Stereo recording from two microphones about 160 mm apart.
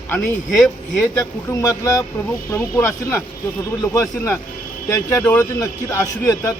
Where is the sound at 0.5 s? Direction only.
Centre (ahead or behind).